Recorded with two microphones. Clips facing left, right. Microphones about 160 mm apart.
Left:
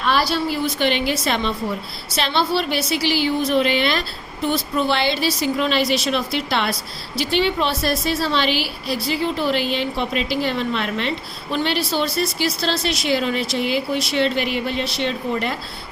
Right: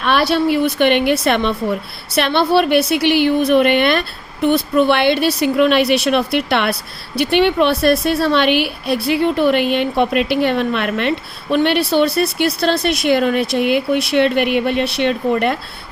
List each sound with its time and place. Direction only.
0.0 s a woman's voice: 65° right (ahead or behind)